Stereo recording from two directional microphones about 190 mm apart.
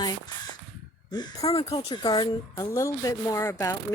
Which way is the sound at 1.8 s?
20° left (ahead or behind).